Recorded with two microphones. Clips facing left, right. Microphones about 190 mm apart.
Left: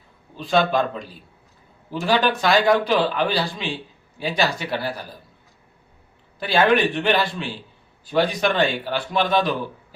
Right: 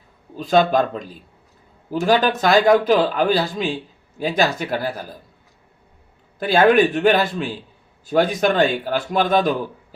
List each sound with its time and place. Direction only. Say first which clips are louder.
0.3 s a man's voice: right 3 dB; 45° right (ahead or behind)
6.4 s a man's voice: right 4 dB; 45° right (ahead or behind)